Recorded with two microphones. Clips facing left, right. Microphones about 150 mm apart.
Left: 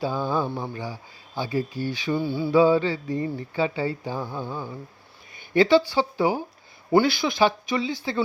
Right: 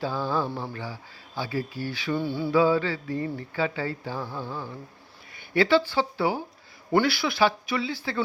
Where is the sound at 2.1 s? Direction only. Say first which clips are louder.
Left 1 dB; centre (ahead or behind).